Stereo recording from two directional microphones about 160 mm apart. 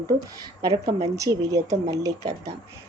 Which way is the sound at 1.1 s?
20° right (ahead or behind).